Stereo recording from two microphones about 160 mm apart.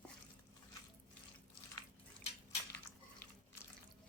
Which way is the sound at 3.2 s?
10° left (ahead or behind).